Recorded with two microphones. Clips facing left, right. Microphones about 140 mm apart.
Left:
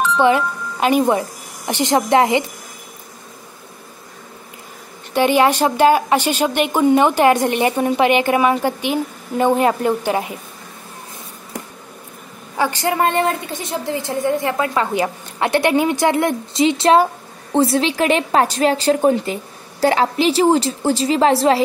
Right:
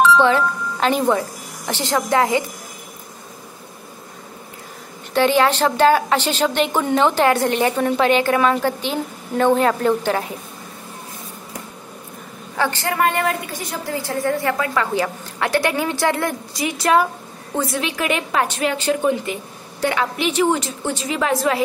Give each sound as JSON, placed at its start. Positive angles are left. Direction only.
{"t": 0.2, "sound": "a woman's voice", "side_deg": 15}
{"t": 5.1, "sound": "a woman's voice", "side_deg": 15}
{"t": 12.5, "sound": "a woman's voice", "side_deg": 15}